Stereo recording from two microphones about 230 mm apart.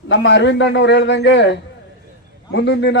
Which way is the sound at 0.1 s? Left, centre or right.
Left.